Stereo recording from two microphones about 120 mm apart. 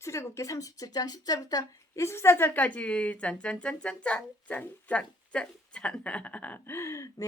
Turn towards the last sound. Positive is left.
turn(degrees=25)  # may be behind; listen again after turning